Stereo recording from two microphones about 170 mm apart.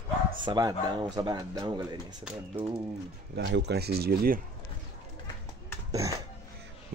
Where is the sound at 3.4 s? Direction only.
80° right; by 4.4 s 65° right (ahead or behind).